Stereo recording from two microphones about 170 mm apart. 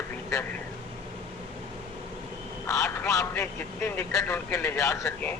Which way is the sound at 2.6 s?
20° left (ahead or behind).